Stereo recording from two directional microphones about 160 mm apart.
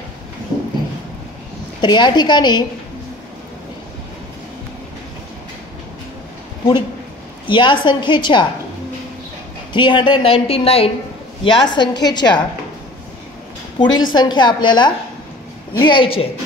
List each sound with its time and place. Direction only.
1.8 s a woman's voice: 30° left (ahead or behind)
7.4 s a woman's voice: 30° left (ahead or behind)
9.7 s a woman's voice: 30° left (ahead or behind)
13.7 s a woman's voice: 25° left (ahead or behind)